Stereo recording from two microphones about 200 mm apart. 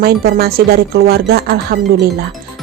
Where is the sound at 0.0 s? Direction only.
50° right (ahead or behind).